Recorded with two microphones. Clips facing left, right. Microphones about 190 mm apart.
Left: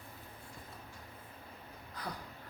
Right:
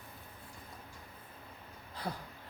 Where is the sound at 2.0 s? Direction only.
30° right (ahead or behind).